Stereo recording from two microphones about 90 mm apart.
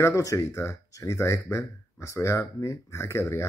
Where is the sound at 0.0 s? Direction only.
35° left (ahead or behind).